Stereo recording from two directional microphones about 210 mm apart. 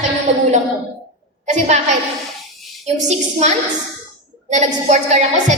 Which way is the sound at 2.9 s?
30° right (ahead or behind).